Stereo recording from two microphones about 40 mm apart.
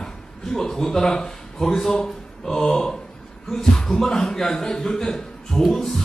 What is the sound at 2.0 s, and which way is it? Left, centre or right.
Mantra, centre.